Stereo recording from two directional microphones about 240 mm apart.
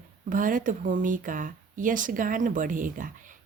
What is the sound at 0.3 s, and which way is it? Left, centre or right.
Speech, right.